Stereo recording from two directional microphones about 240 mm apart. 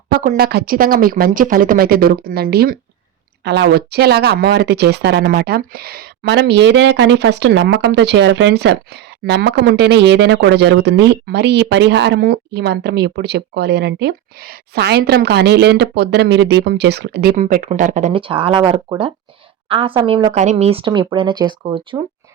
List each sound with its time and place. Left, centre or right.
0.1 s speech: right